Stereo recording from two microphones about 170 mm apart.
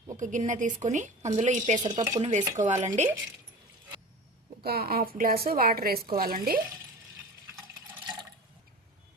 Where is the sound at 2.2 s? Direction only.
45° right (ahead or behind).